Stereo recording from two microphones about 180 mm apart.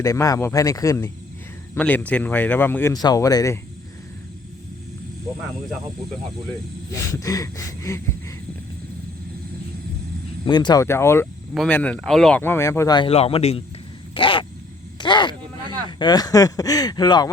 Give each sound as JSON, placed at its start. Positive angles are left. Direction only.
{"t": 0.0, "sound": "speech", "side_deg": 15}
{"t": 7.1, "sound": "speech", "side_deg": 20}
{"t": 10.4, "sound": "speech", "side_deg": 25}
{"t": 14.1, "sound": "a sound", "side_deg": 30}
{"t": 15.9, "sound": "speech", "side_deg": 25}